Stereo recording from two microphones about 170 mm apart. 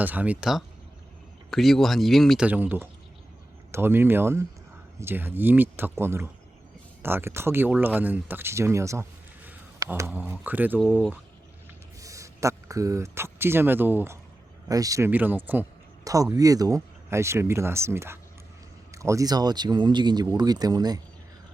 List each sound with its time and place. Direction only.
0.0 s speech: 10° right (ahead or behind)
2.5 s speech: 10° right (ahead or behind)
11.9 s speech: 20° right (ahead or behind)